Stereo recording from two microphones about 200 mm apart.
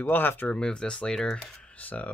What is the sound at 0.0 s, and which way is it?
Speech, 10° left (ahead or behind).